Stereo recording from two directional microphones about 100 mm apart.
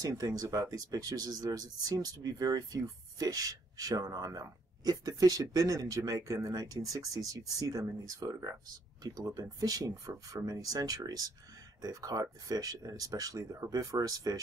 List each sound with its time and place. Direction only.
0.0 s speech: 35° right (ahead or behind)